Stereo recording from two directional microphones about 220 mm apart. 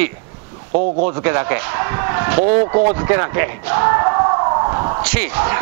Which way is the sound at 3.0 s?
15° right (ahead or behind).